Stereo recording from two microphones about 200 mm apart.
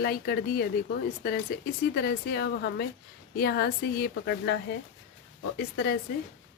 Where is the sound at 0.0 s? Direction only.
50° left (ahead or behind).